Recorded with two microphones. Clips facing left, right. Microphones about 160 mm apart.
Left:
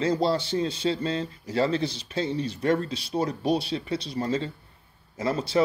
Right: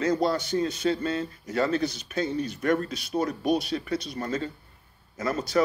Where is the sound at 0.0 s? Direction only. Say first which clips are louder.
Left 1 dB; 30° left (ahead or behind).